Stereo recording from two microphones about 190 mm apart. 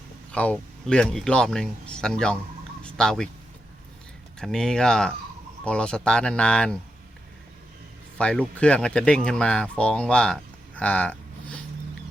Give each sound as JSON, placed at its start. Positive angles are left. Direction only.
{"t": 0.3, "sound": "speech", "side_deg": 5}
{"t": 4.4, "sound": "speech", "side_deg": 5}
{"t": 8.2, "sound": "speech", "side_deg": 5}
{"t": 10.8, "sound": "a sound", "side_deg": 5}